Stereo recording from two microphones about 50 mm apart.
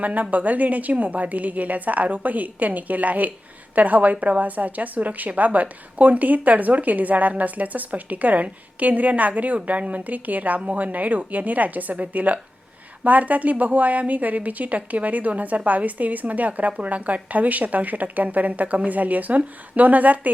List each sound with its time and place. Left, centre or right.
0.0 s a woman's voice: right